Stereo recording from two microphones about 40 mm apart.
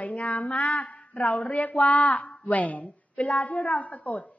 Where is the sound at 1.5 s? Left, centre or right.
Left.